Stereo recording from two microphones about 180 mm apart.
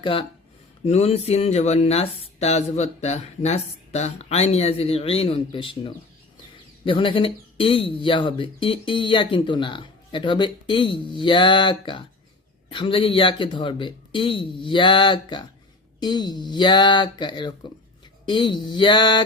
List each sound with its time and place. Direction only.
0.0 s speech: 30° left (ahead or behind)